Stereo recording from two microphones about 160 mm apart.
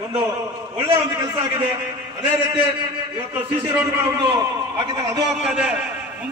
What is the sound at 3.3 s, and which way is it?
Speech, 15° right (ahead or behind).